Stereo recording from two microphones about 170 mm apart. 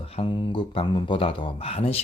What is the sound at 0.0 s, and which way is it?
Speech, 35° left (ahead or behind).